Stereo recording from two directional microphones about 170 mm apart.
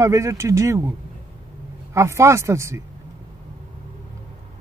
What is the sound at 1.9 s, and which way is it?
Speech, 15° right (ahead or behind).